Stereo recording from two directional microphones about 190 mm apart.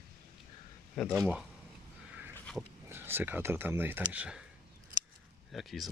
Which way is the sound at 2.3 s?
5° left (ahead or behind).